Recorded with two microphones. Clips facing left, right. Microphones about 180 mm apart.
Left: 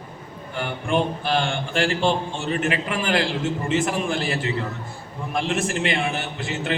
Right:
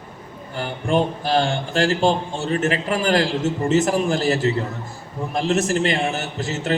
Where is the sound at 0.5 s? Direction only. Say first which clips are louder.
Right 3 dB; 40° right (ahead or behind).